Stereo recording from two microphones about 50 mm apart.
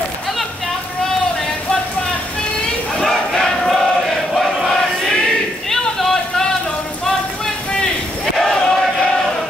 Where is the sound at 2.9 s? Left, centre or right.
Centre.